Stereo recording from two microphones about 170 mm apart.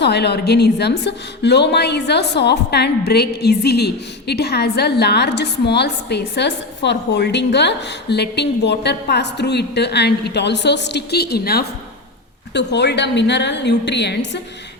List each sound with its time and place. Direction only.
0.0 s a woman's voice: 75° left (ahead or behind)
12.5 s a woman's voice: 90° left